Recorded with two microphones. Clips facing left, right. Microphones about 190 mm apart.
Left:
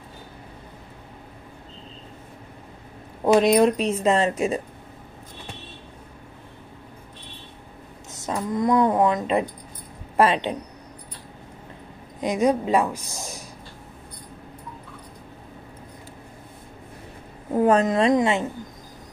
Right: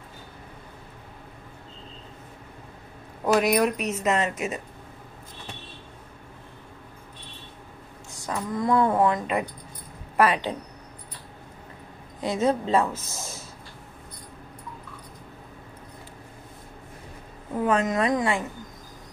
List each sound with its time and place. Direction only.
3.3 s speech: 25° left (ahead or behind)
8.1 s speech: 20° left (ahead or behind)
12.2 s a woman's voice: 15° left (ahead or behind)
17.6 s speech: 40° left (ahead or behind); by 18.5 s 20° left (ahead or behind)